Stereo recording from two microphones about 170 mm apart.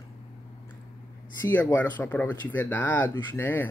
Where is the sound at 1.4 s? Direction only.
10° left (ahead or behind).